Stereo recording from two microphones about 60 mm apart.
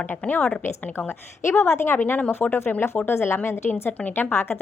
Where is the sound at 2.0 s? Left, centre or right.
Left.